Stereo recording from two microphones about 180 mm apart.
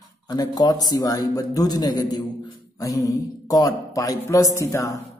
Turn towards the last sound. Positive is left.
turn(degrees=15)  # may be behind; listen again after turning